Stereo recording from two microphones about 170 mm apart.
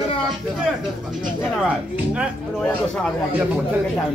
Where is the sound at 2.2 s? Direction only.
5° left (ahead or behind).